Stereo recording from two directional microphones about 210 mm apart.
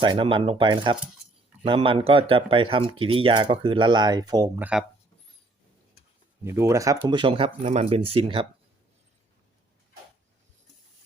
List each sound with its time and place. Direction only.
0.0 s speech: 20° right (ahead or behind); by 4.9 s 5° right (ahead or behind)
6.4 s speech: 10° right (ahead or behind)